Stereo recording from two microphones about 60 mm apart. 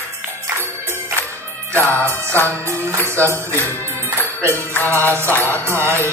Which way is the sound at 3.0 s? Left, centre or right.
Left.